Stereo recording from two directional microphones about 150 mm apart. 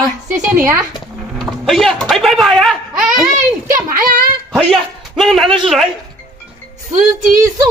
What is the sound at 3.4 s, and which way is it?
Speech, 60° right (ahead or behind).